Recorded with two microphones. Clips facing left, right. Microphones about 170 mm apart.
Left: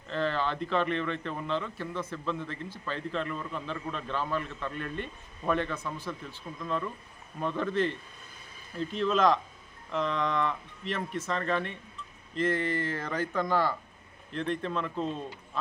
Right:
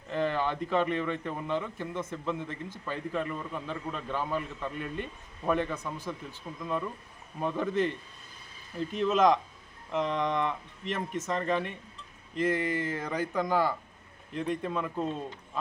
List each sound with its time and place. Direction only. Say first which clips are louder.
0.1 s speech: right 1 dB; 15° right (ahead or behind)